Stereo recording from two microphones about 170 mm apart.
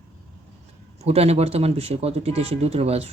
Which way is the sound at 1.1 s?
40° right (ahead or behind).